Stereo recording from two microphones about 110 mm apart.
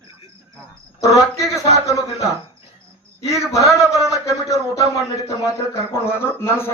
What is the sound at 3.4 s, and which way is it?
A man's voice, 30° left (ahead or behind).